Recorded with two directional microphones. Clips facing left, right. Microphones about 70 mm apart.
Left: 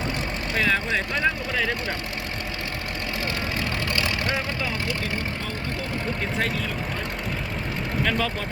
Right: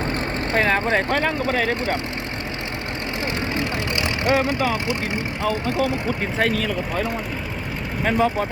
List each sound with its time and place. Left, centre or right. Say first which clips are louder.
0.5 s speech: right 4 dB; right
3.5 s vehicle: right 3 dB; right
4.7 s speech: right 4 dB; centre
6.4 s speech: right 6 dB; right
8.0 s speech: right 8 dB; right